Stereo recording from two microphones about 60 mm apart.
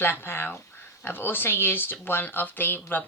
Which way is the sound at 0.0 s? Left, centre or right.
Left.